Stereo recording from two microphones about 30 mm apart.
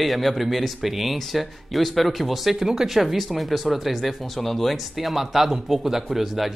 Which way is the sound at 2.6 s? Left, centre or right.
Centre.